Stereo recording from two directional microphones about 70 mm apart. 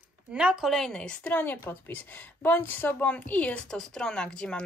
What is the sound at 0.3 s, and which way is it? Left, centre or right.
Speech, centre.